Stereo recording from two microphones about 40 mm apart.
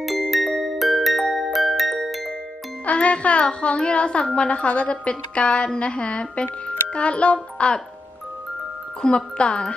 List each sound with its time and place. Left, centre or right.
0.0 s music: centre
0.6 s glockenspiel: centre
2.8 s music: left
3.8 s a woman's voice: left
9.0 s a woman's voice: left